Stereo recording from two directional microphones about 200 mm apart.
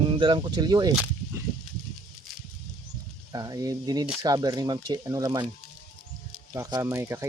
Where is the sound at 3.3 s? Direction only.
20° right (ahead or behind).